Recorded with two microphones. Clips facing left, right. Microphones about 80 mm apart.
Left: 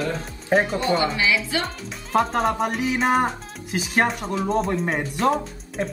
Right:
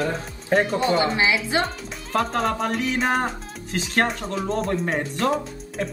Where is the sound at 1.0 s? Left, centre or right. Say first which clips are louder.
Right 1 dB; right.